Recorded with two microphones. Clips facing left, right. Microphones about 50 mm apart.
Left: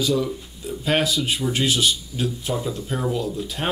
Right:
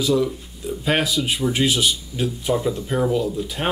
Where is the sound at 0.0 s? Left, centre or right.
Centre.